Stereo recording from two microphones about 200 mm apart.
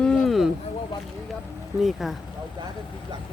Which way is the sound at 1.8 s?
Centre (ahead or behind).